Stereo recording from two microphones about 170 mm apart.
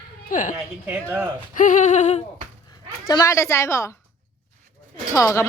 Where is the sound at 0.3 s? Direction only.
50° left (ahead or behind).